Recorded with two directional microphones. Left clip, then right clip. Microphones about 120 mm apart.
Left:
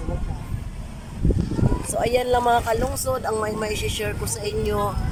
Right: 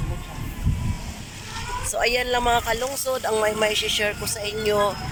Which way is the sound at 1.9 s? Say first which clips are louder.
Left 1 dB; 20° left (ahead or behind).